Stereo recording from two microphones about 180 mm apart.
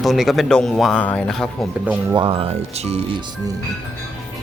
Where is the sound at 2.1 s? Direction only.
30° right (ahead or behind).